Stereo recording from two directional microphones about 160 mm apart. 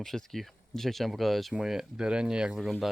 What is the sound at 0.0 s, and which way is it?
Speech, centre (ahead or behind).